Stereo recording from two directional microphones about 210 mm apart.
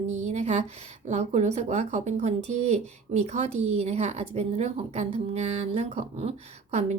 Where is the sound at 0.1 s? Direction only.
35° right (ahead or behind).